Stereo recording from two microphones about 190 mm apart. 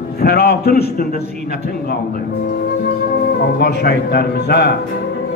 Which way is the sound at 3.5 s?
60° left (ahead or behind).